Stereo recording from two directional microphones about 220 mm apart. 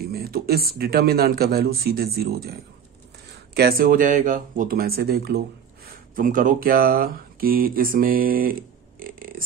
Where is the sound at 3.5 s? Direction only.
45° right (ahead or behind).